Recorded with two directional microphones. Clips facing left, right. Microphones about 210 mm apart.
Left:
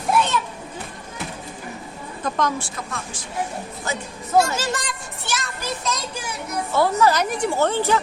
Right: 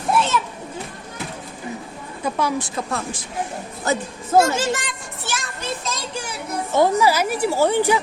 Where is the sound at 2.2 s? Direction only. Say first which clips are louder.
Right 1 dB; 10° right (ahead or behind).